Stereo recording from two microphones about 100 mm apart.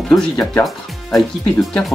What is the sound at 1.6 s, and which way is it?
Speech, 5° left (ahead or behind).